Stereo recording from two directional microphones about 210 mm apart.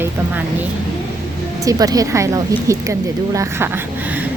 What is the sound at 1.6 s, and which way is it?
Speech, 15° right (ahead or behind).